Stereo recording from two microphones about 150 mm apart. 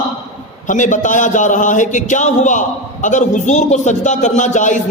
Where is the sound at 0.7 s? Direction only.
55° left (ahead or behind).